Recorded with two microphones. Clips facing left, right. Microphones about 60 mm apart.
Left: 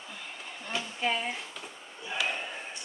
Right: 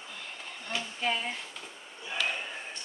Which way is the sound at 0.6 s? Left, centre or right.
Centre.